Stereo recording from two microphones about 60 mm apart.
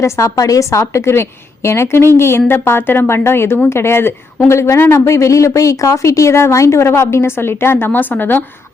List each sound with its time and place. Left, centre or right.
0.0 s speech: left
0.3 s a woman's voice: left